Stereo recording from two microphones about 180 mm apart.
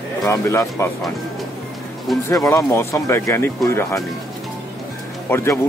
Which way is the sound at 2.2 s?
15° left (ahead or behind).